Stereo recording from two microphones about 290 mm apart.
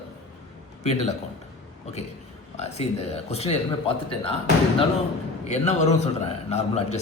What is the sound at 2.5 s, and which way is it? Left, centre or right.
Speech, left.